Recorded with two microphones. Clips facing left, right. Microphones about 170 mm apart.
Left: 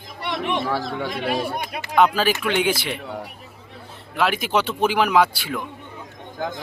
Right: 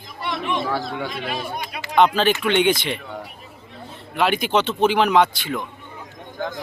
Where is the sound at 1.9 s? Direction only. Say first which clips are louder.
Right 1 dB; 5° left (ahead or behind).